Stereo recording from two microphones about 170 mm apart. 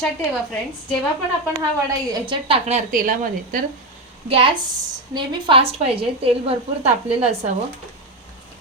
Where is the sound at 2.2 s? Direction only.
30° right (ahead or behind).